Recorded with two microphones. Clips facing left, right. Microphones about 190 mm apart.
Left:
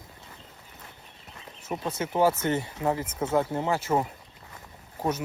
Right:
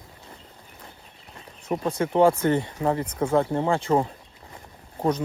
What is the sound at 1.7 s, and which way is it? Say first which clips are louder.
Speech: right 6 dB; 30° right (ahead or behind).